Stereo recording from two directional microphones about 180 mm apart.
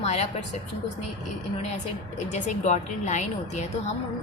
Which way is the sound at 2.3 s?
40° left (ahead or behind).